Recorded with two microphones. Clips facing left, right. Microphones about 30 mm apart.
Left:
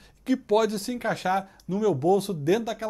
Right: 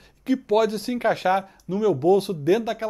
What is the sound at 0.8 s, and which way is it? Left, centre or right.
A man's voice, right.